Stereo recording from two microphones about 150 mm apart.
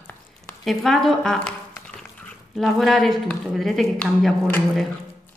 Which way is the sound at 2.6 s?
Centre (ahead or behind).